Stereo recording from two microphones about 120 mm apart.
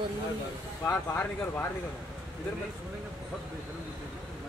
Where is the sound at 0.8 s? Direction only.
20° left (ahead or behind).